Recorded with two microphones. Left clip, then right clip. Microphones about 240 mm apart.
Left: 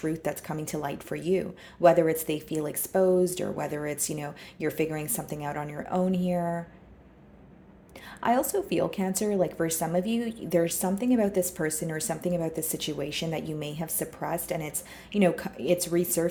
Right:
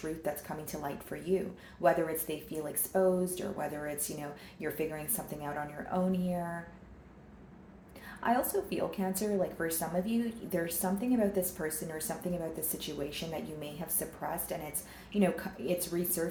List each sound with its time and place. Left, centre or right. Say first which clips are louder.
0.2 s speech: left 5 dB; left
8.2 s speech: left 5 dB; left